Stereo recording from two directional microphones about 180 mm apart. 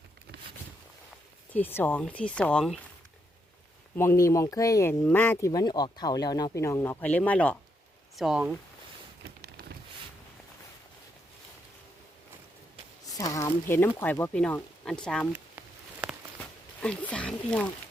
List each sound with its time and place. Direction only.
1.5 s speech: 10° left (ahead or behind)
3.9 s speech: 15° left (ahead or behind)
5.5 s speech: 25° left (ahead or behind); by 8.5 s 5° right (ahead or behind)
13.1 s speech: 20° left (ahead or behind)
15.3 s a sound: 5° right (ahead or behind)
16.8 s speech: 5° left (ahead or behind)